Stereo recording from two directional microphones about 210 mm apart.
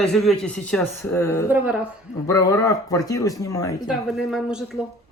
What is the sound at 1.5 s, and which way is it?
Speech, 5° right (ahead or behind).